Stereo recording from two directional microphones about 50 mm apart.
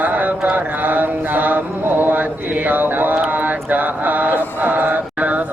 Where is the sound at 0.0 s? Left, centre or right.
Right.